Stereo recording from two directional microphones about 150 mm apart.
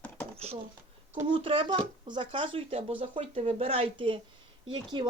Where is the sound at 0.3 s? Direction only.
40° right (ahead or behind).